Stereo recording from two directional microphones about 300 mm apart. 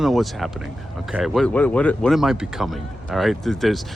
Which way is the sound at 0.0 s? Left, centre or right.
Centre.